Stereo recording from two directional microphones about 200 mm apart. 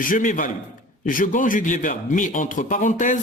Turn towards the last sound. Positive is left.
turn(degrees=40)  # may be behind; listen again after turning